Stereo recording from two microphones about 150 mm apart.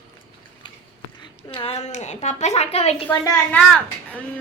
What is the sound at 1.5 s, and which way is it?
A woman's voice, 40° left (ahead or behind).